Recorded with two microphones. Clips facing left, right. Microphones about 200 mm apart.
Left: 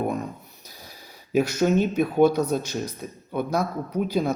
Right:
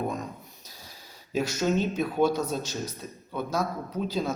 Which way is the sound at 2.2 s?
55° left (ahead or behind).